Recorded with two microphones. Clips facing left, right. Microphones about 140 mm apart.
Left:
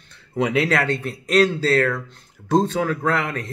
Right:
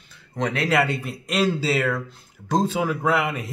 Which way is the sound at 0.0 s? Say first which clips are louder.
Left 5 dB; centre (ahead or behind).